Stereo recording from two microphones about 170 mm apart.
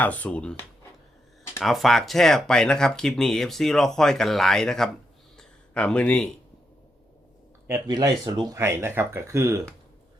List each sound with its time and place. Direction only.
0.0 s speech: 10° left (ahead or behind)
1.6 s speech: centre (ahead or behind)
5.4 s a sound: 5° left (ahead or behind)
7.7 s speech: 20° right (ahead or behind)